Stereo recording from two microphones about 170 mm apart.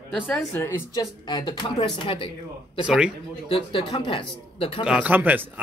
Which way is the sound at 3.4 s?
30° left (ahead or behind).